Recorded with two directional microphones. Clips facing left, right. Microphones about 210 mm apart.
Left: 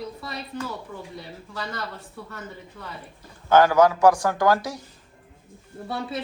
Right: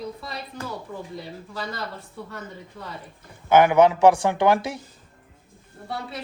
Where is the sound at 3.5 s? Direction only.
20° right (ahead or behind).